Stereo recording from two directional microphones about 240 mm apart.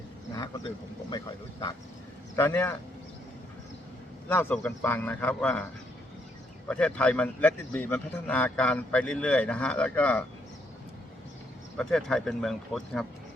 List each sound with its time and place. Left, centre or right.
0.3 s vehicle: centre
2.3 s speech: centre
4.3 s speech: centre
6.7 s speech: centre
11.8 s speech: centre